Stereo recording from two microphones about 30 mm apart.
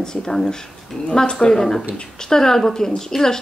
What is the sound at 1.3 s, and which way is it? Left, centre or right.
A woman's voice, centre.